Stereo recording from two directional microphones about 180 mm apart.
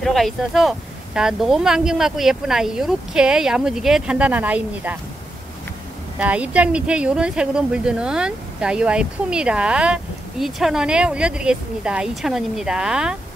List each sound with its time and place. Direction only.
0.0 s speech: centre (ahead or behind)
6.1 s speech: 5° right (ahead or behind)